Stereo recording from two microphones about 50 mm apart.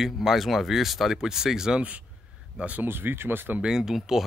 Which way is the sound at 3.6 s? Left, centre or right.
Centre.